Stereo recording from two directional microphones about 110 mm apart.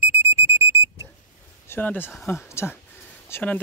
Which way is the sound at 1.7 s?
20° left (ahead or behind).